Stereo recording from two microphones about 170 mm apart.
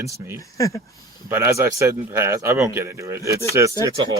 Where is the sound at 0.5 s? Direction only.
20° left (ahead or behind).